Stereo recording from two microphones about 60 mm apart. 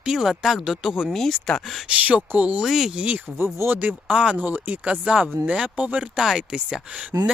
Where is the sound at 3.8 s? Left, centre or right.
Right.